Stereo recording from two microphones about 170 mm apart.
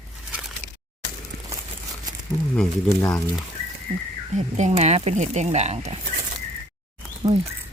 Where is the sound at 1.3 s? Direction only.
70° right (ahead or behind).